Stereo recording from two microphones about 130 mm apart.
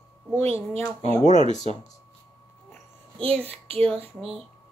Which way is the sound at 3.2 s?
45° right (ahead or behind).